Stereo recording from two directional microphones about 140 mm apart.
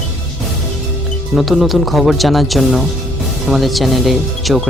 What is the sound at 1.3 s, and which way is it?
Speech, centre (ahead or behind).